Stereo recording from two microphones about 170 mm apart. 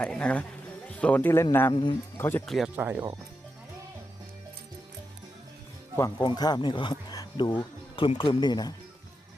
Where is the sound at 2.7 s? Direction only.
10° right (ahead or behind).